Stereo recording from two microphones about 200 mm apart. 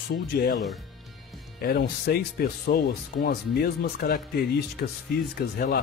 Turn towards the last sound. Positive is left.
turn(degrees=50)  # may be behind; listen again after turning